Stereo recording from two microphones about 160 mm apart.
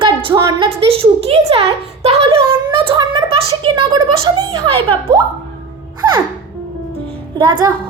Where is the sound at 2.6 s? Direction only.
30° right (ahead or behind).